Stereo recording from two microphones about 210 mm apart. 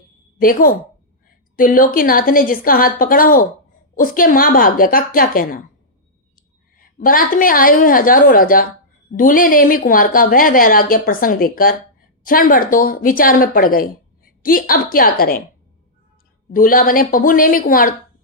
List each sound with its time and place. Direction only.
0.3 s a woman's voice: 40° left (ahead or behind)
6.7 s a woman's voice: 40° left (ahead or behind)
16.5 s a woman's voice: 40° left (ahead or behind)